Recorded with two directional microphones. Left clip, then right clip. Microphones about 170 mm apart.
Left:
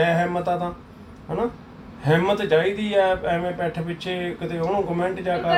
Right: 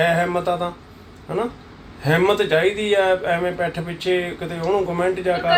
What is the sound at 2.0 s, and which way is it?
A man's voice, 25° right (ahead or behind).